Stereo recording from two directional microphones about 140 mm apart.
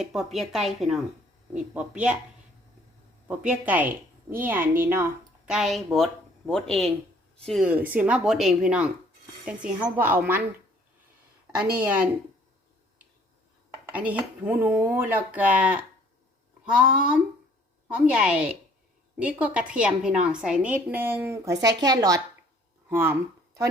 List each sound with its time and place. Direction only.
0.0 s speech: centre (ahead or behind)
3.2 s speech: 10° right (ahead or behind)
5.5 s speech: centre (ahead or behind)
7.6 s speech: 10° right (ahead or behind)
11.8 s speech: 10° right (ahead or behind)
13.9 s speech: 10° right (ahead or behind); by 22.2 s 25° right (ahead or behind)
22.9 s speech: 15° right (ahead or behind)